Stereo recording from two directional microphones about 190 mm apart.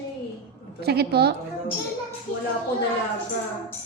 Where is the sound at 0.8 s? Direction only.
55° right (ahead or behind).